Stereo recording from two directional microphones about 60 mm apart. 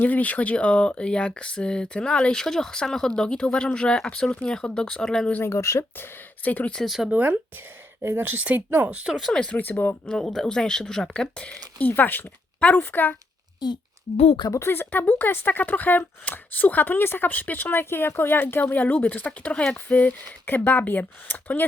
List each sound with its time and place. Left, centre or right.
0.0 s speech: left; by 5.3 s centre
5.4 s speech: left
6.4 s speech: left
6.7 s speech: centre
7.1 s speech: right
8.0 s speech: right
9.2 s speech: centre
9.6 s speech: left
10.1 s speech: centre
11.9 s speech: left
12.5 s a sound: left
12.8 s speech: left
14.6 s speech: left